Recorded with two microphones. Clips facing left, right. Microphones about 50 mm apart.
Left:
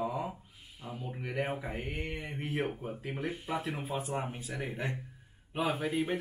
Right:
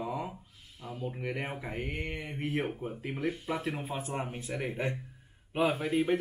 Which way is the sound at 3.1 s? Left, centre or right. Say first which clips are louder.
Right 5 dB; centre.